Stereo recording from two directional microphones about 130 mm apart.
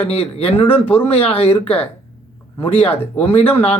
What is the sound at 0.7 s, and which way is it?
Speech, 15° left (ahead or behind).